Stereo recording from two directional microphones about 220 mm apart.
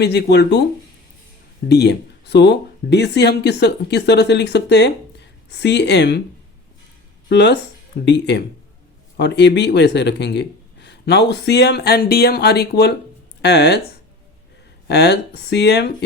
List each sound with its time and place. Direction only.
0.0 s speech: 50° left (ahead or behind)
1.6 s speech: 50° left (ahead or behind)
7.3 s speech: 50° left (ahead or behind)
14.8 s speech: 50° left (ahead or behind)